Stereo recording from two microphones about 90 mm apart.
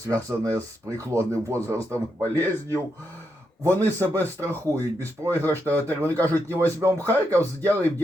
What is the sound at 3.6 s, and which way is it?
Speech, 35° right (ahead or behind).